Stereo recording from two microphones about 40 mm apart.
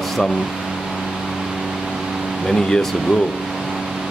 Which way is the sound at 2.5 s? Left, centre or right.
Centre.